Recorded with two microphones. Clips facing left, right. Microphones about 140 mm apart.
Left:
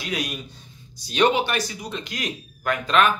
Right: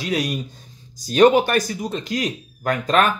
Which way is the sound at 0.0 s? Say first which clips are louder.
Right 6 dB; 40° right (ahead or behind).